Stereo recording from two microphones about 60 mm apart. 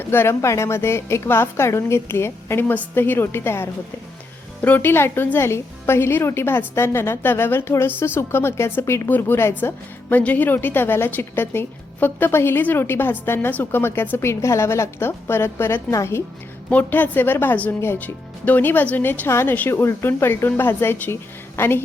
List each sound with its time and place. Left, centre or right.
0.0 s a woman's voice: left
0.4 s a woman's voice: left
4.6 s speech: left
4.9 s a woman's voice: left
8.8 s a woman's voice: left
9.0 s a woman's voice: left
10.1 s a woman's voice: left
14.2 s a woman's voice: left
16.6 s a woman's voice: left
19.8 s a woman's voice: left